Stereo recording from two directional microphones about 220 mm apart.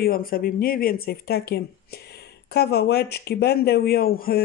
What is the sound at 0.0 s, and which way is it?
Speech, 40° left (ahead or behind).